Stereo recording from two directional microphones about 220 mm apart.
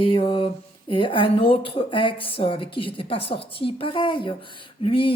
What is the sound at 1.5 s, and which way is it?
Speech, 25° left (ahead or behind).